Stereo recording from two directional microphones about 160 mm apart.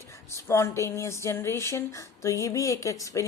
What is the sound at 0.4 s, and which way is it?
Speech, 15° left (ahead or behind).